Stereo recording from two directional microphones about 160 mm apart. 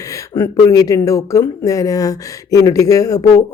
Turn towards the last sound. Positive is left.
turn(degrees=20)  # may be behind; listen again after turning